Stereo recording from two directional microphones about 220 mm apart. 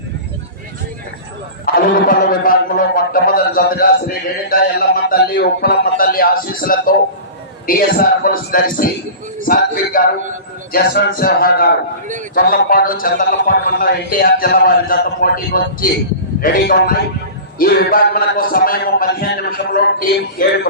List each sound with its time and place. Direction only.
1.6 s a man's voice: 40° left (ahead or behind)